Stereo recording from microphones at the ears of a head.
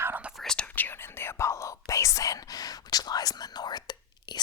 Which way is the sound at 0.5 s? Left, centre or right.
Left.